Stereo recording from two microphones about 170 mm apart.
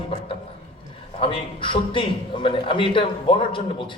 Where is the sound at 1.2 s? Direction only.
30° left (ahead or behind).